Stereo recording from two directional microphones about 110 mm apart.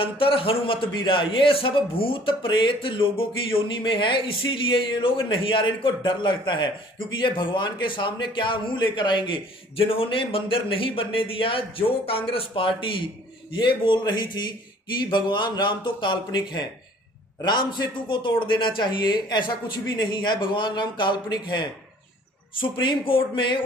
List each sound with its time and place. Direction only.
0.0 s a man's voice: 55° left (ahead or behind)